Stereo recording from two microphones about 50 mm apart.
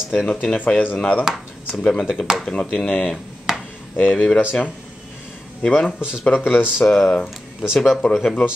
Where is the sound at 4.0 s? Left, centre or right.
Left.